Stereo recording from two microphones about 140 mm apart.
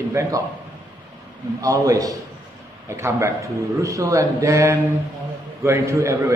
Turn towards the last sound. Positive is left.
turn(degrees=-20)  # may be behind; listen again after turning